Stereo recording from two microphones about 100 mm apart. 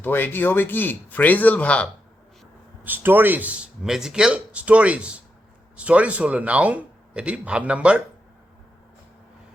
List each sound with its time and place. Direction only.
0.0 s speech: 20° left (ahead or behind)
2.8 s speech: 20° right (ahead or behind)